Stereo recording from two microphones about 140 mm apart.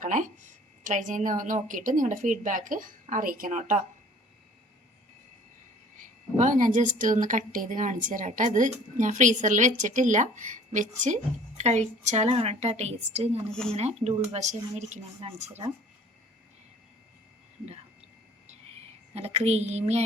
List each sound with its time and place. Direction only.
0.0 s a sound: 65° right (ahead or behind)
0.9 s a woman's voice: 65° right (ahead or behind)
6.3 s a woman's voice: 65° right (ahead or behind)
19.1 s speech: 45° right (ahead or behind)